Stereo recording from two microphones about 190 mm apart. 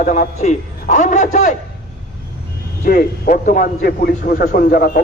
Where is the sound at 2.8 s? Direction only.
45° left (ahead or behind).